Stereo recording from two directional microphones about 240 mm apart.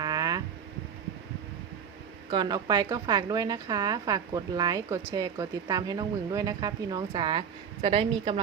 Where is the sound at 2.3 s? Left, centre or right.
Centre.